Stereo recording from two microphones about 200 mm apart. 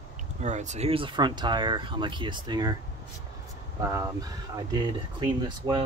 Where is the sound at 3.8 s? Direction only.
15° right (ahead or behind).